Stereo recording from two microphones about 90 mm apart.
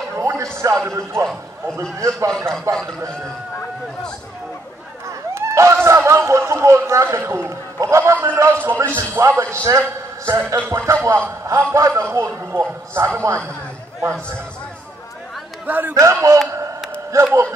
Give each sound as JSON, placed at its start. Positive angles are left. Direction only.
{"t": 0.2, "sound": "a sound", "side_deg": -35}
{"t": 0.8, "sound": "a man's voice", "side_deg": -35}
{"t": 1.2, "sound": "a man's voice", "side_deg": 5}
{"t": 1.8, "sound": "a man's voice", "side_deg": -35}
{"t": 2.7, "sound": "a man's voice", "side_deg": 5}
{"t": 5.3, "sound": "a man's voice", "side_deg": -30}
{"t": 15.6, "sound": "a man's voice", "side_deg": -20}
{"t": 15.9, "sound": "a man's voice", "side_deg": -35}